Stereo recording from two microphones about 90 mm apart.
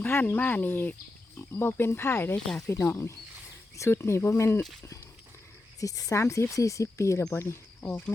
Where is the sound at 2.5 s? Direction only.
5° left (ahead or behind).